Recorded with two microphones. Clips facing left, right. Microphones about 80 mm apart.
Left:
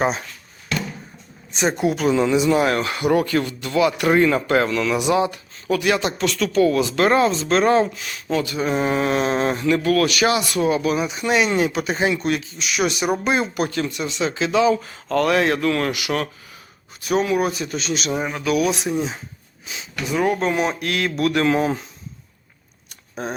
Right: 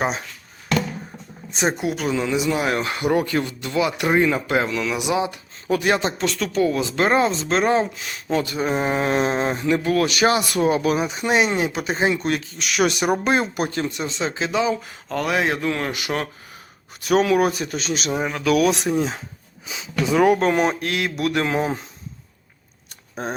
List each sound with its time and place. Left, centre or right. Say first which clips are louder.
1.7 s speech: left 4 dB; centre
2.8 s speech: left 2 dB; right
5.6 s speech: even; right
12.5 s speech: right 1 dB; right
13.2 s speech: even; right; by 15.9 s centre
15.9 s speech: left 2 dB; right
17.1 s a man's voice: right 2 dB; right
18.3 s speech: right 2 dB; centre
18.9 s a man's voice: right 2 dB; right
20.4 s speech: right 2 dB; right
20.9 s speech: left 2 dB; right